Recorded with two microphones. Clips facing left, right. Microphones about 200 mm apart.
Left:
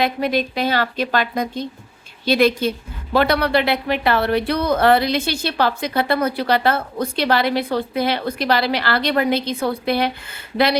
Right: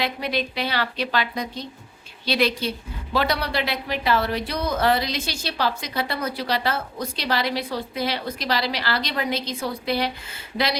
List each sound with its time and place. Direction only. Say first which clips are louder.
0.0 s a woman's voice: left 6 dB; 50° left (ahead or behind)